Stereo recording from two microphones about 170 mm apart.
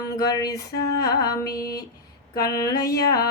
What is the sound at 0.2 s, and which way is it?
Mantra, 20° left (ahead or behind).